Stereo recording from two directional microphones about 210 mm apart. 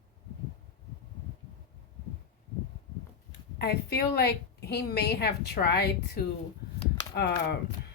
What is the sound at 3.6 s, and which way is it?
A woman's voice, 50° left (ahead or behind).